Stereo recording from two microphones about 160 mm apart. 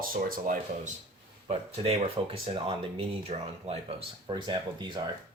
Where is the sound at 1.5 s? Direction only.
40° right (ahead or behind).